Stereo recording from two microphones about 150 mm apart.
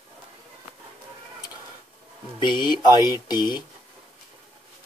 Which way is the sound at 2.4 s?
30° left (ahead or behind).